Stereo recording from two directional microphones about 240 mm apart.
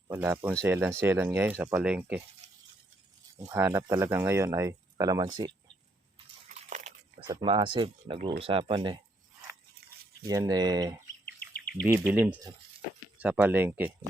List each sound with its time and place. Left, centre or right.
0.1 s speech: centre
3.3 s speech: centre
6.7 s a sound: right
7.3 s speech: right
10.2 s speech: centre
11.3 s bird: left
11.7 s speech: centre